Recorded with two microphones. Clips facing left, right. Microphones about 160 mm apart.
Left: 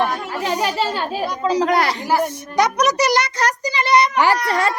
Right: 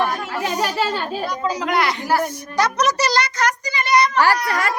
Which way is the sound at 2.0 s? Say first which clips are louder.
Left 1 dB; 15° left (ahead or behind).